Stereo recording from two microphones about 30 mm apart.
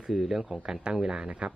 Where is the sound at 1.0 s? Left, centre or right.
Right.